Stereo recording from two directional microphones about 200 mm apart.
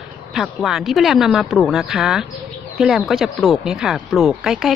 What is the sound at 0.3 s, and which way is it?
Speech, centre (ahead or behind).